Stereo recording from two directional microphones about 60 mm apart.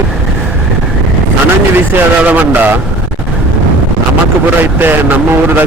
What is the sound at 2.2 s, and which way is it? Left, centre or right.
Speech, right.